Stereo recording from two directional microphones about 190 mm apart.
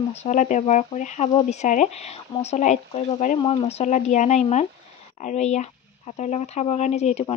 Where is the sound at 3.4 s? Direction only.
30° left (ahead or behind).